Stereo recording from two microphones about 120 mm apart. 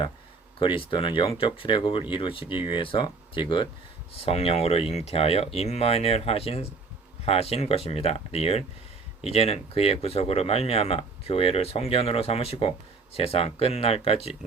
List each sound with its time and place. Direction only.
0.6 s speech: 45° left (ahead or behind)
4.2 s speech: 60° left (ahead or behind)